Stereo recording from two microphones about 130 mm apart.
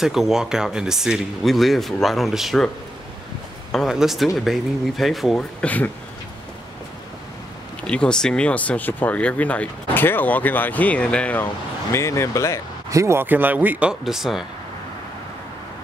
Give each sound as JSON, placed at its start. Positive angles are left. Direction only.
{"t": 0.0, "sound": "speech", "side_deg": -5}
{"t": 3.7, "sound": "speech", "side_deg": -5}
{"t": 7.8, "sound": "speech", "side_deg": 10}
{"t": 11.9, "sound": "speech", "side_deg": 20}
{"t": 12.9, "sound": "speech", "side_deg": -20}